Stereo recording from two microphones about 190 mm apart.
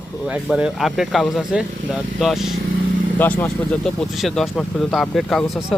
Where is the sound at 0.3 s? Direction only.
5° right (ahead or behind).